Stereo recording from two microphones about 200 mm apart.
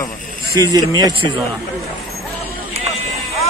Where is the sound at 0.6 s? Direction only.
20° right (ahead or behind).